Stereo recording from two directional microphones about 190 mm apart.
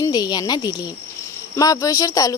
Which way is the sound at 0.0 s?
20° left (ahead or behind).